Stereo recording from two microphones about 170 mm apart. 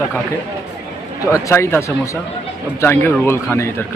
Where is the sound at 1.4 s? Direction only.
15° left (ahead or behind).